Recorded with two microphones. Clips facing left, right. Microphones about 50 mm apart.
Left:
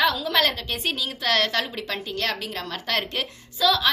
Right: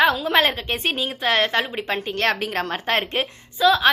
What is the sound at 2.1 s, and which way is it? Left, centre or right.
Speech, right.